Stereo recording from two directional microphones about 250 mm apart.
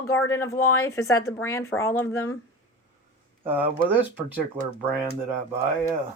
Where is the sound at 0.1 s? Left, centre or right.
Centre.